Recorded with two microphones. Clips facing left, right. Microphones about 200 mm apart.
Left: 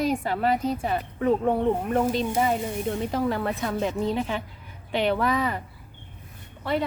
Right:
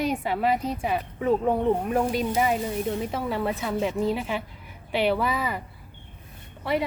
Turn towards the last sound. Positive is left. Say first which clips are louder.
# even
turn(degrees=-5)  # may be behind; listen again after turning